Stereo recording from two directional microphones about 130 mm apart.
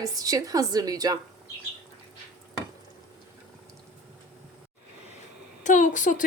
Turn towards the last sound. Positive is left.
turn(degrees=75)  # may be behind; listen again after turning